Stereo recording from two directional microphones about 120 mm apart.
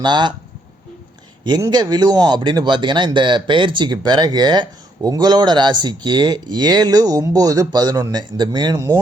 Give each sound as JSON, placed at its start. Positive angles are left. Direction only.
{"t": 0.0, "sound": "speech", "side_deg": -40}
{"t": 1.5, "sound": "speech", "side_deg": -35}